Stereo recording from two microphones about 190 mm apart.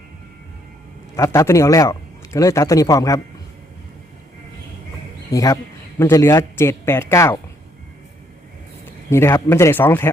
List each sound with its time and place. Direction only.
1.1 s a man's voice: 15° left (ahead or behind)
5.3 s speech: 20° left (ahead or behind)
9.0 s speech: 15° left (ahead or behind)